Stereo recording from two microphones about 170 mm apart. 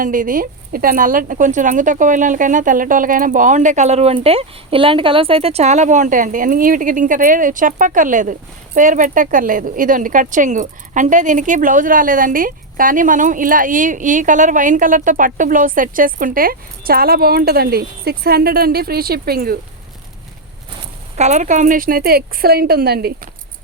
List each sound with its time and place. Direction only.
0.0 s a woman's voice: 50° right (ahead or behind)
21.2 s speech: 45° right (ahead or behind); by 23.3 s 65° right (ahead or behind)